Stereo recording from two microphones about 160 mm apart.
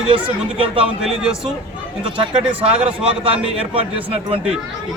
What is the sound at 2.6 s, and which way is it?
A man's voice, 35° right (ahead or behind).